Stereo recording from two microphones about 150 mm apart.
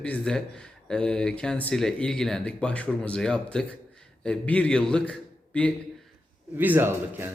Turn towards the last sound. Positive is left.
turn(degrees=-15)  # may be behind; listen again after turning